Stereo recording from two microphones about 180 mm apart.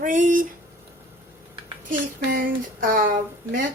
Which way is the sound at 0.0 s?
45° right (ahead or behind).